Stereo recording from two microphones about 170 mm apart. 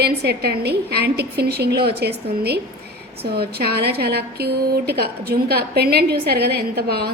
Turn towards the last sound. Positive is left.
turn(degrees=-70)  # may be behind; listen again after turning